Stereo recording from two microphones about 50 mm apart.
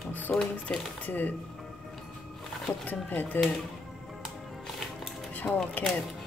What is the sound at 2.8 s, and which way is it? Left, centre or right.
Speech, left.